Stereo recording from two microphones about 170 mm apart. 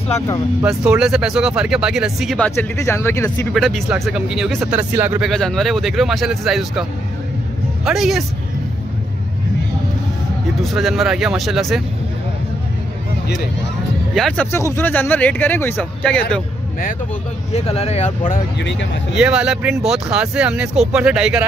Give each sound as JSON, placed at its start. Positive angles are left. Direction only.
{"t": 0.7, "sound": "speech", "side_deg": -5}
{"t": 3.5, "sound": "speech", "side_deg": 0}
{"t": 5.3, "sound": "speech", "side_deg": 5}
{"t": 10.6, "sound": "speech", "side_deg": 0}
{"t": 14.1, "sound": "speech", "side_deg": 5}
{"t": 17.5, "sound": "speech", "side_deg": 40}
{"t": 18.6, "sound": "speech", "side_deg": 90}
{"t": 19.1, "sound": "speech", "side_deg": -5}